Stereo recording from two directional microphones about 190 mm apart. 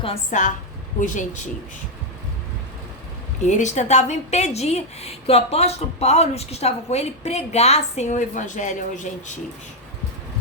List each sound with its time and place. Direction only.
0.0 s a woman's voice: 35° left (ahead or behind)
3.4 s a woman's voice: 40° left (ahead or behind)